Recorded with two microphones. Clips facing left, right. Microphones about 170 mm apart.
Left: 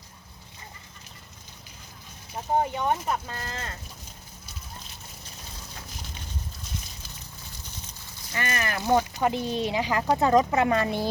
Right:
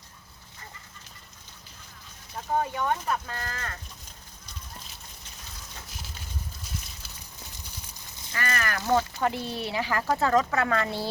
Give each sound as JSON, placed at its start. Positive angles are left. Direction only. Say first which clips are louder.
{"t": 2.3, "sound": "speech", "louder": "left 2 dB", "side_deg": 20}
{"t": 8.3, "sound": "speech", "louder": "left 1 dB", "side_deg": 20}